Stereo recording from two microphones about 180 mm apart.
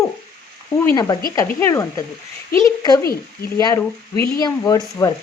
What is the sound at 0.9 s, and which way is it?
Speech, 20° left (ahead or behind).